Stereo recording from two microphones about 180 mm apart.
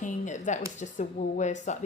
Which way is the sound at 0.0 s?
40° left (ahead or behind).